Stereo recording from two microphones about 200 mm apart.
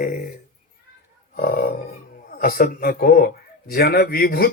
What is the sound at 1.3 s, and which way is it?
Speech, 45° left (ahead or behind).